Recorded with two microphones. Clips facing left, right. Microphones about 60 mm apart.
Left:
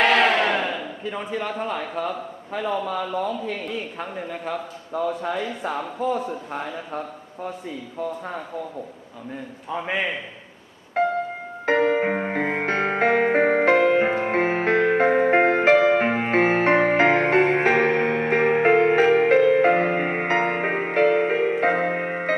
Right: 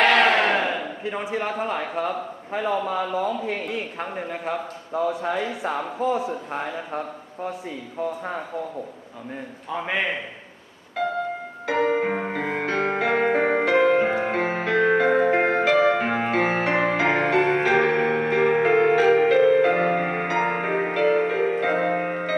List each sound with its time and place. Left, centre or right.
0.0 s a sound: centre
1.1 s a man's voice: centre
2.6 s speech: centre
4.1 s speech: right
4.4 s a man's voice: centre
9.7 s speech: centre
11.0 s music: left